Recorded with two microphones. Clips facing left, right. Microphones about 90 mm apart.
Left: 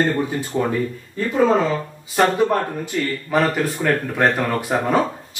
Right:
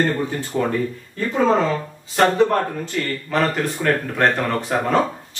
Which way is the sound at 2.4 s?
15° left (ahead or behind).